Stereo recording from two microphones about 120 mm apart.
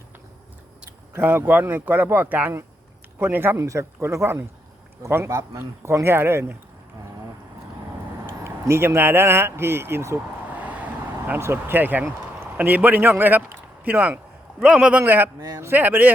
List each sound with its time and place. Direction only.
1.1 s a man's voice: 20° right (ahead or behind)
8.3 s speech: 20° right (ahead or behind)
10.6 s vehicle: 15° right (ahead or behind)
11.3 s speech: 20° right (ahead or behind)